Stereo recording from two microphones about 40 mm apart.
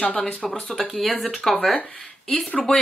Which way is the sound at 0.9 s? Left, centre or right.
Centre.